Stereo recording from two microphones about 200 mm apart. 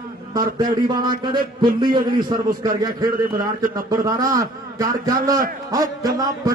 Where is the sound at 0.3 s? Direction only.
20° right (ahead or behind).